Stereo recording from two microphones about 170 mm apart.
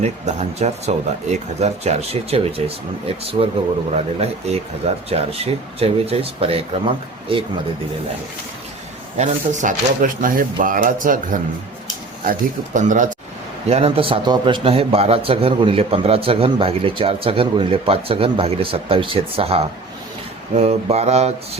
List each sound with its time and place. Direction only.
0.0 s a man's voice: 40° right (ahead or behind)
9.1 s speech: 45° right (ahead or behind)
13.7 s a man's voice: 35° right (ahead or behind)